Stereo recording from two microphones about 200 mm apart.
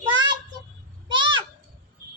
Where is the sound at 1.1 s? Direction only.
25° right (ahead or behind).